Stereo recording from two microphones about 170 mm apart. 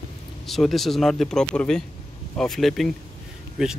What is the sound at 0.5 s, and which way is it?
Speech, centre (ahead or behind).